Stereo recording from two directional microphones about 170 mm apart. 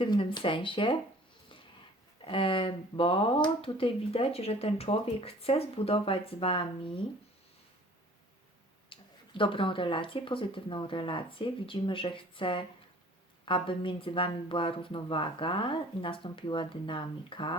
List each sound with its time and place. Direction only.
0.0 s speech: 30° left (ahead or behind)
2.2 s speech: 30° left (ahead or behind)
8.9 s speech: 30° left (ahead or behind)